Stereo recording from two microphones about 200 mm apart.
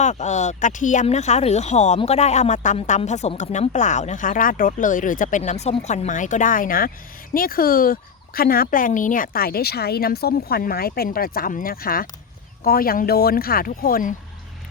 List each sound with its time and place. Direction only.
0.0 s speech: 35° left (ahead or behind)